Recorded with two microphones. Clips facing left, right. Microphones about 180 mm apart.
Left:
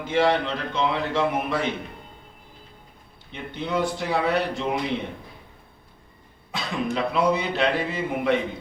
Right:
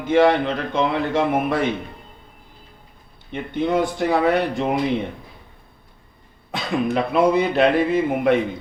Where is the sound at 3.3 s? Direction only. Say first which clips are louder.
Right 7 dB; 50° right (ahead or behind).